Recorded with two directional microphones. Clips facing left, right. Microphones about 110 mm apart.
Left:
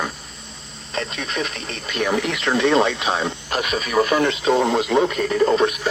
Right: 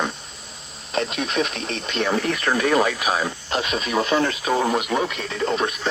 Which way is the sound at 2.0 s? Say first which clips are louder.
Left 1 dB; 15° left (ahead or behind).